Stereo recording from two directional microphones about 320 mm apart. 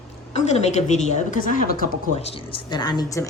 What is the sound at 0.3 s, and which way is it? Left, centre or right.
A woman's voice, left.